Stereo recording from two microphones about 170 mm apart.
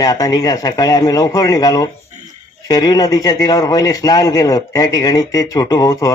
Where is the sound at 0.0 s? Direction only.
20° left (ahead or behind).